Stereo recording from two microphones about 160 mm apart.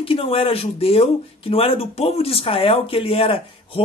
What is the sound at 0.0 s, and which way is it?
Speech, 35° left (ahead or behind).